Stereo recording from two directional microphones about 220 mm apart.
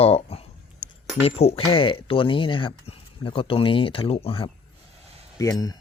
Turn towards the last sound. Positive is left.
turn(degrees=15)  # may be behind; listen again after turning